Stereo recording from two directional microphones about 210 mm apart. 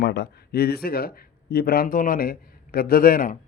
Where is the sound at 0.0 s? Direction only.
50° left (ahead or behind).